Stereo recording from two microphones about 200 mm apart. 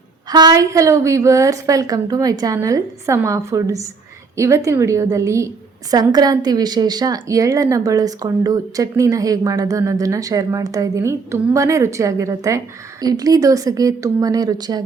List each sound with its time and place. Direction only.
0.3 s a woman's voice: 20° right (ahead or behind)